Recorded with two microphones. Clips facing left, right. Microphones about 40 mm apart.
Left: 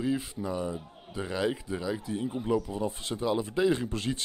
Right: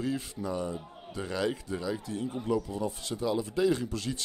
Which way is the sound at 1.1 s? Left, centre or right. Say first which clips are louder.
Left 1 dB; centre.